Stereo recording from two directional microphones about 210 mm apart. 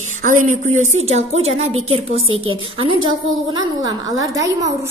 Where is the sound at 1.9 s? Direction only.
75° right (ahead or behind).